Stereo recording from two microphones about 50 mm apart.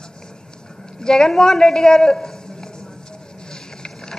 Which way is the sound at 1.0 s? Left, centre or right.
Centre.